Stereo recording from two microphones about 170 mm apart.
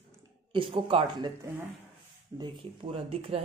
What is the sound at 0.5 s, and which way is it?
Speech, 30° right (ahead or behind).